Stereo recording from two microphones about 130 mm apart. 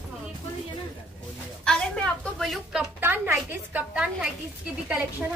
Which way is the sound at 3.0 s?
15° right (ahead or behind).